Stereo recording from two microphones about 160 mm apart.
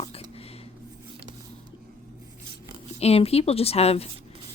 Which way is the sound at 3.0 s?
40° left (ahead or behind).